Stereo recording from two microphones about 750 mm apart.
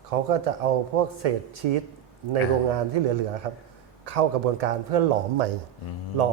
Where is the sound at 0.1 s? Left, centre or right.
Right.